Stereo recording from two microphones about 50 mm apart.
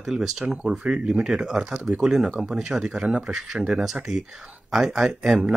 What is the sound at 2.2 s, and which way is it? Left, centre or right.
Speech, right.